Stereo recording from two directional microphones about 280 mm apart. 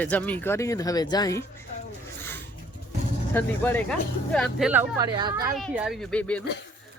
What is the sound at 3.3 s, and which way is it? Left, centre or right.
A woman's voice, centre.